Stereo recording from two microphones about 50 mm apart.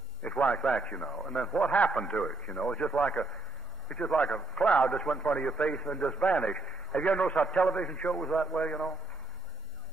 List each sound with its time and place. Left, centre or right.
0.2 s radio: left
0.6 s a man's voice: left